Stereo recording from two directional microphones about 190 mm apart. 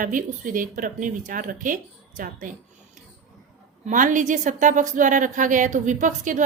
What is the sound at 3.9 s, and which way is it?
A woman's voice, 40° right (ahead or behind).